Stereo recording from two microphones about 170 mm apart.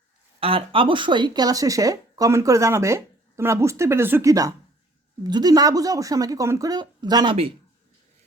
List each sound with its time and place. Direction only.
0.3 s speech: 35° right (ahead or behind)